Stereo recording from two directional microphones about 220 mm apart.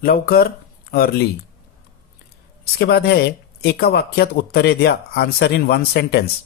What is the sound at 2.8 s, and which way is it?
Speech, 45° left (ahead or behind).